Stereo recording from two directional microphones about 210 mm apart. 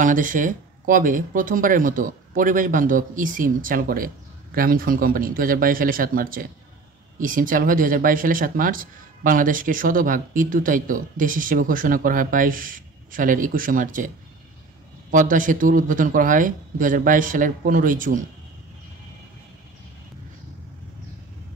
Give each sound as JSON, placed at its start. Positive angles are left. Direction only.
{"t": 0.0, "sound": "speech", "side_deg": -40}